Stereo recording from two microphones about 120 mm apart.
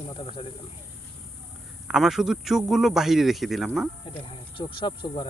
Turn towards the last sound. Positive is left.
turn(degrees=45)  # may be behind; listen again after turning